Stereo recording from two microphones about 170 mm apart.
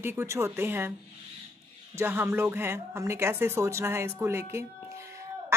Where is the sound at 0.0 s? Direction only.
15° right (ahead or behind).